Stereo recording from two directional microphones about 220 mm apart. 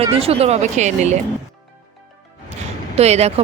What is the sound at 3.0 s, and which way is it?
Speech, 30° right (ahead or behind).